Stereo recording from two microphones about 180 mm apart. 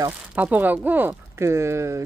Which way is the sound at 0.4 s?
10° right (ahead or behind).